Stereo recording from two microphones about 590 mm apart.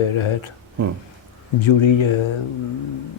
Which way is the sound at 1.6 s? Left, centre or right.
Left.